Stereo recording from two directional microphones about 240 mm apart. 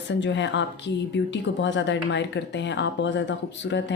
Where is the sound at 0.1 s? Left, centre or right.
Left.